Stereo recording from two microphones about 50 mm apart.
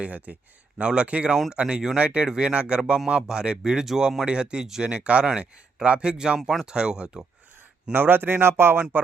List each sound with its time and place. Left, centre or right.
0.0 s speech: right
7.9 s speech: right